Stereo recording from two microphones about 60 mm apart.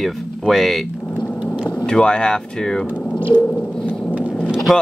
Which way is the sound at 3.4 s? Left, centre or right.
Centre.